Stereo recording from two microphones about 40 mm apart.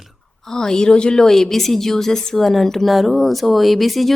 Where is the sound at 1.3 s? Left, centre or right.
Centre.